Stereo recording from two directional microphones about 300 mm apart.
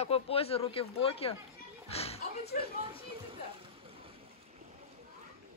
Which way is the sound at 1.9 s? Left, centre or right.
Centre.